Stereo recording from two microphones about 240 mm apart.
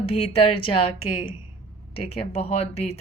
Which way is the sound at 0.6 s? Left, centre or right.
Left.